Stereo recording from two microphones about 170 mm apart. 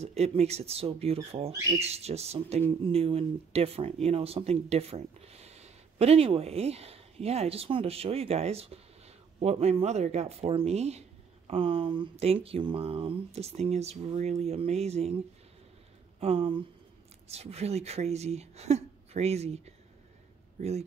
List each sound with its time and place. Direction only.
0.0 s speech: 40° right (ahead or behind)
16.2 s speech: 35° right (ahead or behind)